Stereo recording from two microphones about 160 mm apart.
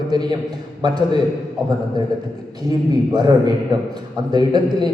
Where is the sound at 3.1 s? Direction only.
25° right (ahead or behind).